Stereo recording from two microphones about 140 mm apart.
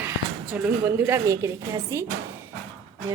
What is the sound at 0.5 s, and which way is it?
A woman's voice, 15° right (ahead or behind).